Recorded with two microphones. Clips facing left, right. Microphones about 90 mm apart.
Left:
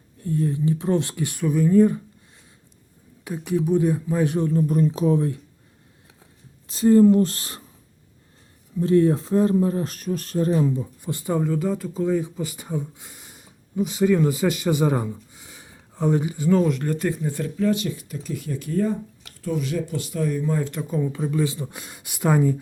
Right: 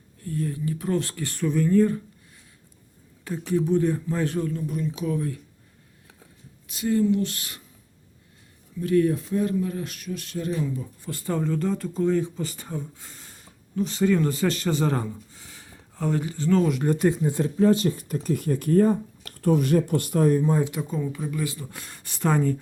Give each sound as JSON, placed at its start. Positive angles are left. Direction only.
{"t": 0.2, "sound": "speech", "side_deg": 20}
{"t": 3.2, "sound": "speech", "side_deg": 10}
{"t": 4.4, "sound": "speech", "side_deg": 40}
{"t": 6.7, "sound": "speech", "side_deg": 35}
{"t": 8.8, "sound": "speech", "side_deg": 30}
{"t": 10.8, "sound": "speech", "side_deg": 20}
{"t": 16.8, "sound": "speech", "side_deg": -20}
{"t": 20.8, "sound": "speech", "side_deg": 5}
{"t": 21.1, "sound": "speech", "side_deg": 25}